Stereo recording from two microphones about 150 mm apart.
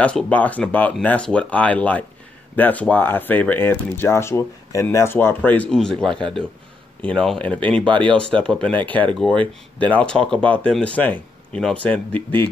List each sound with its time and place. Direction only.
0.0 s speech: 10° left (ahead or behind)
7.8 s speech: 35° right (ahead or behind)
8.2 s speech: 5° left (ahead or behind)